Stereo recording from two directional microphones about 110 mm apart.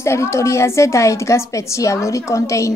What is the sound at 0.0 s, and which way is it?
A woman's voice, 25° left (ahead or behind).